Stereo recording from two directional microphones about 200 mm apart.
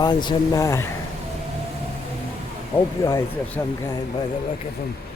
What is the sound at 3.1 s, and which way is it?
Speech, 15° left (ahead or behind).